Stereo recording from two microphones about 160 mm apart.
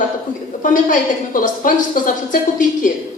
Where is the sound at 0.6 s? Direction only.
55° left (ahead or behind).